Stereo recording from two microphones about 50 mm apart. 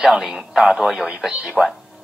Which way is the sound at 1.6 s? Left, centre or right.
Centre.